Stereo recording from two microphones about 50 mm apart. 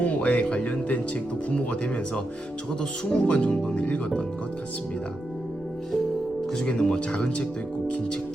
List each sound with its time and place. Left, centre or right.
0.0 s music: left
0.6 s speech: left
6.5 s speech: centre